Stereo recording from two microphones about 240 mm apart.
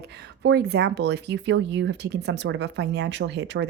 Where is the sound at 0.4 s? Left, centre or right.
Right.